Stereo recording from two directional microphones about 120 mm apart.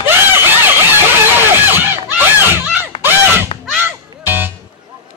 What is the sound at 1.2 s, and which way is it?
Music, 15° right (ahead or behind).